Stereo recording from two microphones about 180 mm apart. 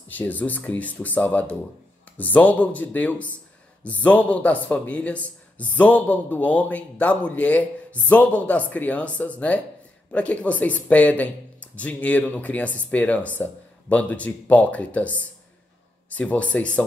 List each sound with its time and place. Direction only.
0.1 s speech: 10° left (ahead or behind)